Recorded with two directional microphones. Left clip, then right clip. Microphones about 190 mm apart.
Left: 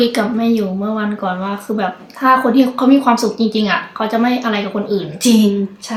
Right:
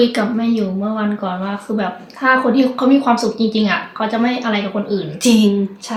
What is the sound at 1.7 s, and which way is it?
A woman's voice, 25° left (ahead or behind).